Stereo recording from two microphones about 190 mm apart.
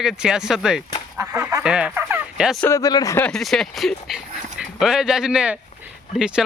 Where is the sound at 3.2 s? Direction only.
Centre (ahead or behind).